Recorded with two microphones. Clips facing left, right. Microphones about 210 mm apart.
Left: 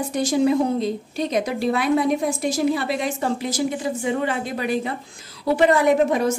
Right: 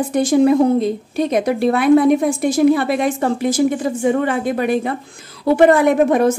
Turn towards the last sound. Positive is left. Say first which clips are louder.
# right 5 dB
turn(degrees=-55)  # may be behind; listen again after turning